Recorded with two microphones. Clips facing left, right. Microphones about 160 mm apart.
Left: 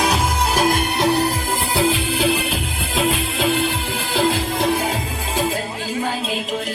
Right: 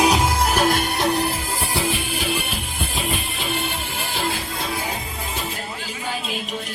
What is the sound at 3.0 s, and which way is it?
Music, 90° left.